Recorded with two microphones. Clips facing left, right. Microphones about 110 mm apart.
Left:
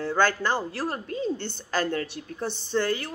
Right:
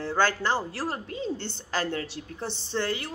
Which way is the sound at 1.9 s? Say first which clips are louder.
Left 3 dB; 50° left (ahead or behind).